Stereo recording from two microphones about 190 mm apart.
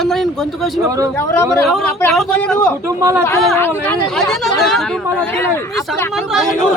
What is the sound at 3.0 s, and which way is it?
Speech, 15° right (ahead or behind).